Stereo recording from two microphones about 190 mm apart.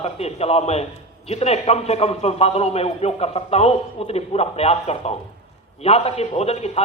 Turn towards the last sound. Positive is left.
turn(degrees=35)  # may be behind; listen again after turning